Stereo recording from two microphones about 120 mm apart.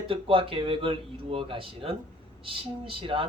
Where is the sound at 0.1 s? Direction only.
50° right (ahead or behind).